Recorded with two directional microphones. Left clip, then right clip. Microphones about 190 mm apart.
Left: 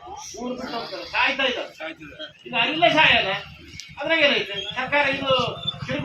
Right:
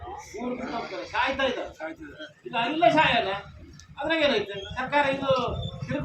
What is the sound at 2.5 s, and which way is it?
Speech, 25° left (ahead or behind).